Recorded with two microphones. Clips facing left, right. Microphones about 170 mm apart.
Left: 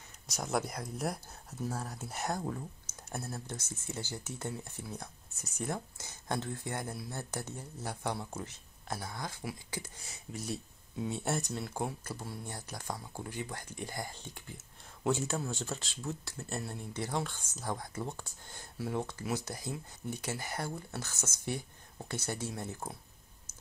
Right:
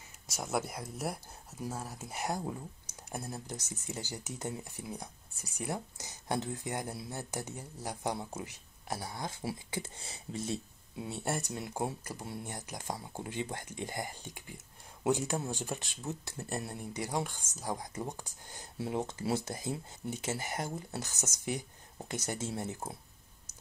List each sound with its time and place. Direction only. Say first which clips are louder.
0.3 s speech: left 1 dB; 5° right (ahead or behind); by 10.6 s 25° right (ahead or behind)
11.0 s speech: left 2 dB; 5° right (ahead or behind); by 22.9 s 20° right (ahead or behind)